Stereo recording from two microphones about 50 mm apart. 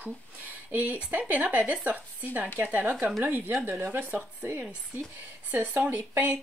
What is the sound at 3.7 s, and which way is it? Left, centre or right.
Speech, right.